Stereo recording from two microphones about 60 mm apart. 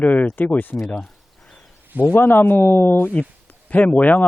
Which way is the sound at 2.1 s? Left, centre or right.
Left.